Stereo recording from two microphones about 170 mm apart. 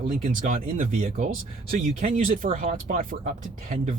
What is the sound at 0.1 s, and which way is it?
Speech, 50° right (ahead or behind).